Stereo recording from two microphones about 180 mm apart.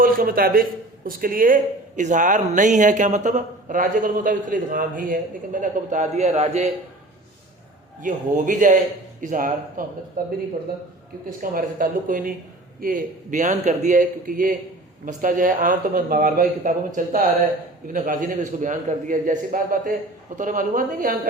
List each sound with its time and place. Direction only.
0.0 s speech: 55° right (ahead or behind); by 6.7 s 40° right (ahead or behind)
8.0 s speech: 45° right (ahead or behind)
11.5 s speech: 50° right (ahead or behind)